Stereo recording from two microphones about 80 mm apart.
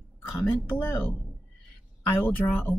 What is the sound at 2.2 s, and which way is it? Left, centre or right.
Speech, left.